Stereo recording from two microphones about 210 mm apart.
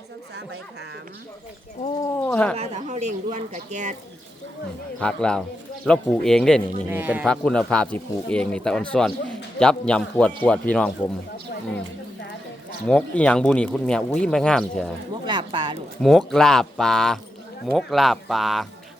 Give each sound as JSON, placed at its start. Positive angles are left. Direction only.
{"t": 2.1, "sound": "speech", "side_deg": 5}
{"t": 2.6, "sound": "speech", "side_deg": -35}
{"t": 4.9, "sound": "speech", "side_deg": 5}
{"t": 6.8, "sound": "speech", "side_deg": -10}
{"t": 7.3, "sound": "speech", "side_deg": 5}
{"t": 12.9, "sound": "speech", "side_deg": 5}
{"t": 15.3, "sound": "speech", "side_deg": -20}
{"t": 16.0, "sound": "speech", "side_deg": 0}